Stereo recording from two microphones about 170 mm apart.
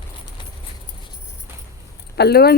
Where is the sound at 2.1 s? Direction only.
70° left (ahead or behind).